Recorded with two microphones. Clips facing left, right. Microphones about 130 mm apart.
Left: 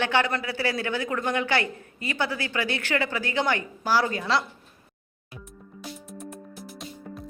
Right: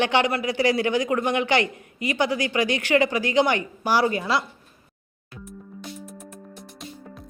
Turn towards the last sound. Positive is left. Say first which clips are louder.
# left 1 dB
turn(degrees=0)  # may be behind; listen again after turning